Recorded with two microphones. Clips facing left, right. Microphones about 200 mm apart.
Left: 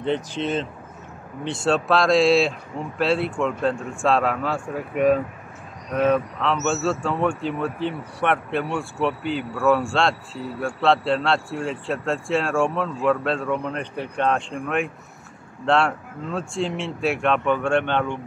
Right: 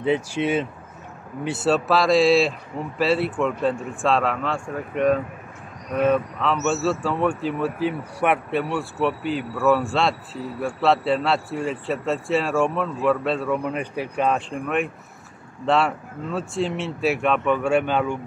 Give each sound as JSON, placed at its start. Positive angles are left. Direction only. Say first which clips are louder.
{"t": 0.0, "sound": "a man's voice", "louder": "right 2 dB", "side_deg": -10}